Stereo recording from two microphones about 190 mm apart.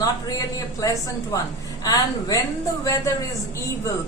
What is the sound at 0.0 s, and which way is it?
A woman's voice, 20° left (ahead or behind).